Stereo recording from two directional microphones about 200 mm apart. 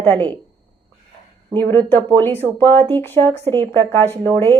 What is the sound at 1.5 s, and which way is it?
A woman's voice, 10° left (ahead or behind).